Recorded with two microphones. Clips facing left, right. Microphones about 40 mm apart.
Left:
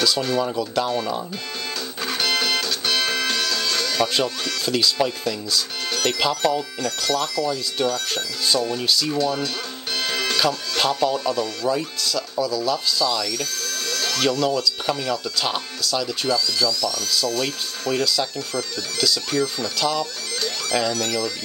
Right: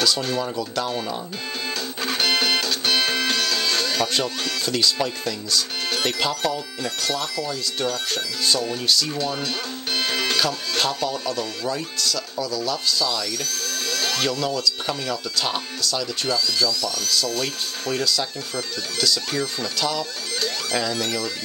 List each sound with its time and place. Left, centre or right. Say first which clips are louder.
0.0 s speech: left 2 dB; centre
2.0 s music: right 1 dB; centre
4.6 s speech: left 2 dB; centre
9.2 s speech: left 3 dB; centre
9.9 s music: even; centre
10.8 s speech: left 4 dB; centre
13.5 s music: even; centre
14.4 s speech: left 2 dB; centre
19.3 s speech: left 3 dB; centre